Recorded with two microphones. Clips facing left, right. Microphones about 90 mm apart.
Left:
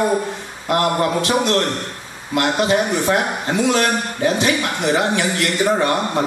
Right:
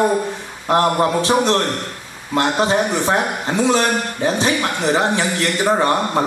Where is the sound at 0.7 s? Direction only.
30° right (ahead or behind).